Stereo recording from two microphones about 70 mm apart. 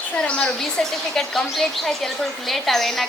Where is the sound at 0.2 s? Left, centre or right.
Centre.